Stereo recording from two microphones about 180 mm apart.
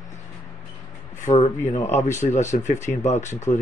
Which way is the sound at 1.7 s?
40° left (ahead or behind).